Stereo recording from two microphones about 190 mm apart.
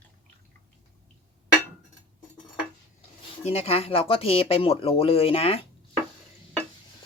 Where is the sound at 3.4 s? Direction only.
30° left (ahead or behind).